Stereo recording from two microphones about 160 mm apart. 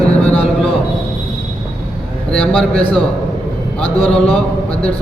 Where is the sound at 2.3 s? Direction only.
5° left (ahead or behind).